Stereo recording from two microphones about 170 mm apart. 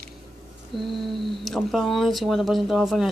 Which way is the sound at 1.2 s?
Centre (ahead or behind).